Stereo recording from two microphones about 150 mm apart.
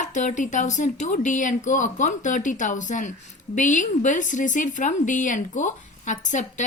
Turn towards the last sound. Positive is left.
turn(degrees=55)  # may be behind; listen again after turning